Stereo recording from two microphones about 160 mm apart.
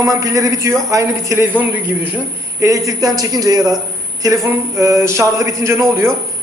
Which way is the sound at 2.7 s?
20° right (ahead or behind).